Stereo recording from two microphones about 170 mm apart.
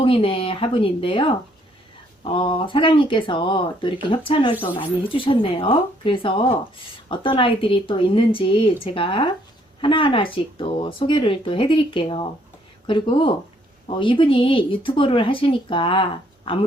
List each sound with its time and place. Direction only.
0.0 s speech: 30° left (ahead or behind)